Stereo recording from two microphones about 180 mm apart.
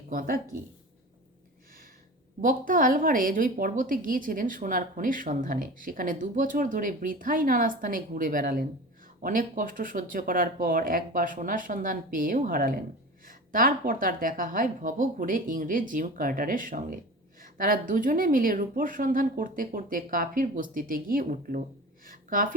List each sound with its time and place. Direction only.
0.1 s a woman's voice: 50° right (ahead or behind)
2.4 s a woman's voice: 50° right (ahead or behind)
22.0 s a sound: 50° right (ahead or behind)